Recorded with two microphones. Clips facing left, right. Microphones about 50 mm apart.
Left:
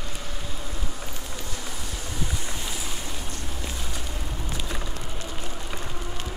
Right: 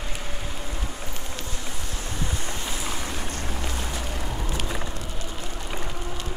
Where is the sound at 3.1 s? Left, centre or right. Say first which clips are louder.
Right 4 dB; right.